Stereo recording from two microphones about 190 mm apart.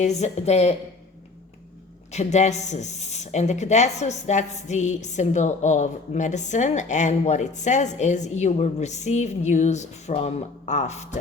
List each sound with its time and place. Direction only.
0.0 s speech: 35° left (ahead or behind)
2.1 s speech: 35° left (ahead or behind)